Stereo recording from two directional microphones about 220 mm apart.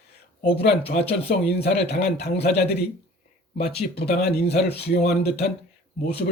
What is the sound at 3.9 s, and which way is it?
A man's voice, 45° left (ahead or behind).